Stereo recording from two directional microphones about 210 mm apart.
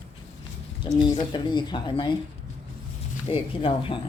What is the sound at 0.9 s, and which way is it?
Speech, 20° left (ahead or behind).